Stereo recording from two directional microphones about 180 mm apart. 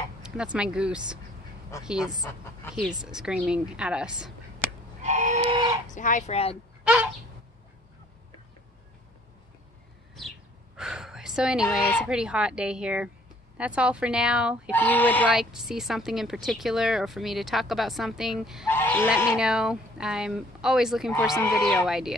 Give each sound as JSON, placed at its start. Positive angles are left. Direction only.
{"t": 0.2, "sound": "speech", "side_deg": -5}
{"t": 2.7, "sound": "speech", "side_deg": -5}
{"t": 5.0, "sound": "a sound", "side_deg": -40}
{"t": 5.9, "sound": "speech", "side_deg": 45}
{"t": 6.8, "sound": "a sound", "side_deg": -5}
{"t": 10.8, "sound": "a sound", "side_deg": -5}
{"t": 12.1, "sound": "speech", "side_deg": -5}
{"t": 14.7, "sound": "speech", "side_deg": 10}
{"t": 15.2, "sound": "speech", "side_deg": 0}
{"t": 18.7, "sound": "goose", "side_deg": 10}
{"t": 19.3, "sound": "speech", "side_deg": -5}
{"t": 21.4, "sound": "speech", "side_deg": 15}
{"t": 21.8, "sound": "speech", "side_deg": -5}